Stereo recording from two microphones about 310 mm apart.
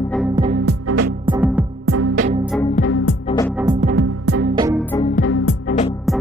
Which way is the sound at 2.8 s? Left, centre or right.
Left.